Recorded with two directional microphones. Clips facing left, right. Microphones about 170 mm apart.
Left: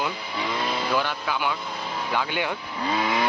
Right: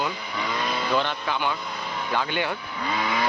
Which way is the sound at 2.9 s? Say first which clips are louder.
Left 2 dB; 25° left (ahead or behind).